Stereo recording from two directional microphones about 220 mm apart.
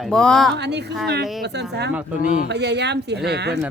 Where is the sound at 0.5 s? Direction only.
50° right (ahead or behind).